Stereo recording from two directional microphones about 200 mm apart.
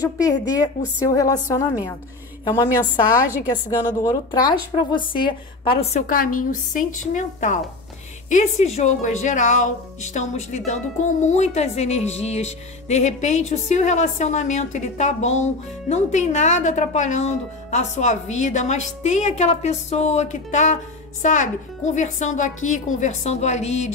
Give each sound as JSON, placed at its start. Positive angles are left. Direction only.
{"t": 0.0, "sound": "a woman's voice", "side_deg": 20}
{"t": 4.0, "sound": "a woman's voice", "side_deg": 20}